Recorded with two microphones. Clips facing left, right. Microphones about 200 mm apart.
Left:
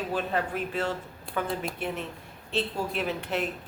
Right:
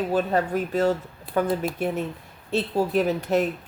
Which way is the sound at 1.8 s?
40° right (ahead or behind).